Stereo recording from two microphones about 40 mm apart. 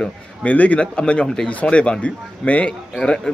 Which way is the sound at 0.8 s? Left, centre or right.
Left.